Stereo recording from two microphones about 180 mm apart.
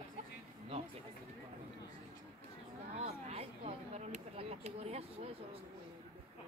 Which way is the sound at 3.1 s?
35° right (ahead or behind).